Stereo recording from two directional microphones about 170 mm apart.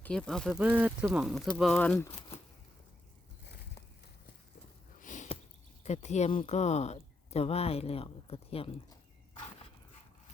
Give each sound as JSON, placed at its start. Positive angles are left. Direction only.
{"t": 0.0, "sound": "speech", "side_deg": 5}
{"t": 0.6, "sound": "speech", "side_deg": -10}
{"t": 1.8, "sound": "speech", "side_deg": 10}
{"t": 4.9, "sound": "a sound", "side_deg": 50}
{"t": 5.8, "sound": "speech", "side_deg": 40}